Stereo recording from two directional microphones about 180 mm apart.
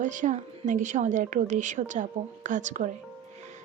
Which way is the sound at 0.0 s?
45° right (ahead or behind).